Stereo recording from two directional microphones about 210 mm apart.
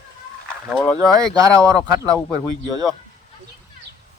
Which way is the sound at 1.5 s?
15° right (ahead or behind).